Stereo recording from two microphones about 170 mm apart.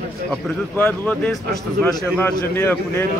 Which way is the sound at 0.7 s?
10° left (ahead or behind).